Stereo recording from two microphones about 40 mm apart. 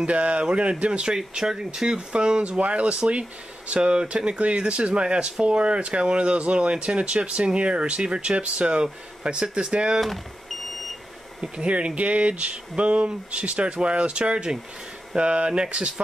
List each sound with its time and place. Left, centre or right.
0.0 s speech: right
1.1 s speech: centre
9.9 s a sound: centre
11.4 s speech: right